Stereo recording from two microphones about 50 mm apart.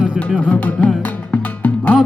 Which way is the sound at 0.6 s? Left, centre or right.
Left.